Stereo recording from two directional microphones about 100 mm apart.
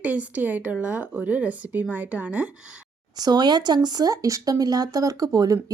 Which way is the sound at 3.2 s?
45° right (ahead or behind).